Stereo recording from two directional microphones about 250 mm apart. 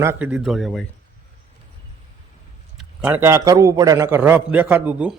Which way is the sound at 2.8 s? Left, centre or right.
Centre.